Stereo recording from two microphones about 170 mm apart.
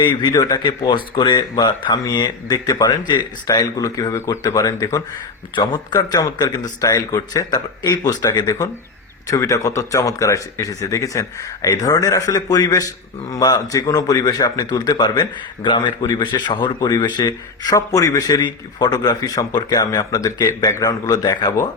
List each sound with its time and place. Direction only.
0.0 s speech: 25° left (ahead or behind)